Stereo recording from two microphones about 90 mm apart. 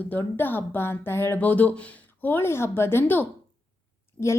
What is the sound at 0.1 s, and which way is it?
Speech, 20° left (ahead or behind).